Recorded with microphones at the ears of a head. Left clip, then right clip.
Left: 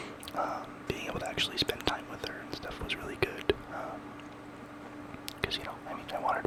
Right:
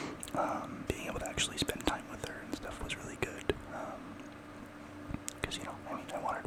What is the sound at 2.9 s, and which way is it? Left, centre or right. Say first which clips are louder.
Whispering: left 7 dB; left.